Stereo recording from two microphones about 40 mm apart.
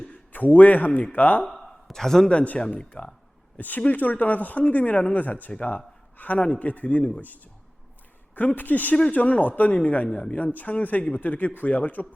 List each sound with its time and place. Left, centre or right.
0.1 s a sound: left
0.9 s speech: left
1.9 s a man's voice: centre
2.3 s speech: left
3.8 s speech: left
5.5 s speech: left
8.5 s speech: left